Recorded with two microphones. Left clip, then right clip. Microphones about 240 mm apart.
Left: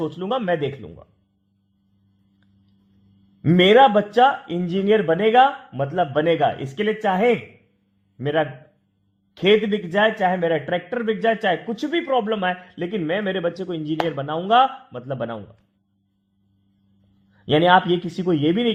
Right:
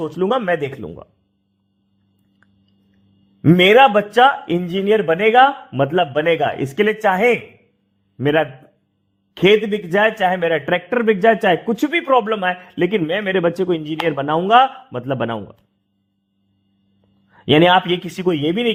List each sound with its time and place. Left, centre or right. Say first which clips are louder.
0.0 s a man's voice: right 5 dB; right
3.4 s a man's voice: right 3 dB; right
17.3 s a man's voice: right 3 dB; right